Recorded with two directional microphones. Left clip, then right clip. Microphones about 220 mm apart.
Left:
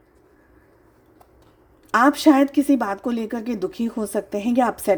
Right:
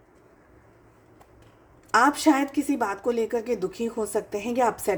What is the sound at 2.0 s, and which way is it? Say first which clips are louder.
Speech: left 4 dB; 35° left (ahead or behind).